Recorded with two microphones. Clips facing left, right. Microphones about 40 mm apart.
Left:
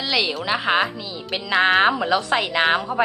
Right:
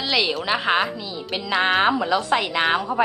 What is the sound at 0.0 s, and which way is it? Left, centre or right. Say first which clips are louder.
Speech: even; centre.